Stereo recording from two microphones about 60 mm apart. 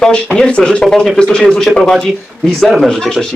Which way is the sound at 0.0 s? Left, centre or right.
Centre.